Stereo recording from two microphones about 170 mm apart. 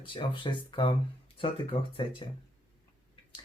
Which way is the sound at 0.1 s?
30° left (ahead or behind).